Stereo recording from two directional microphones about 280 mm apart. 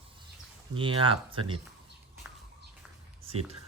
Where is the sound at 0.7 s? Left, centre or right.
Centre.